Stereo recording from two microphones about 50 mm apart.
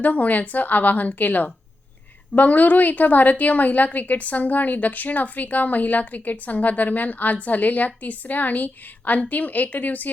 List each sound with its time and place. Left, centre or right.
0.0 s a woman's voice: left